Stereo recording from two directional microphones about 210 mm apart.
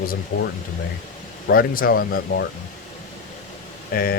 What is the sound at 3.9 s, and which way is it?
Speech, 45° left (ahead or behind).